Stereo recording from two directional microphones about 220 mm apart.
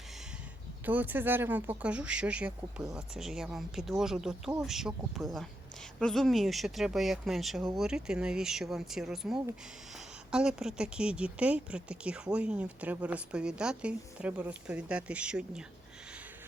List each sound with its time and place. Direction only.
0.9 s speech: 10° right (ahead or behind)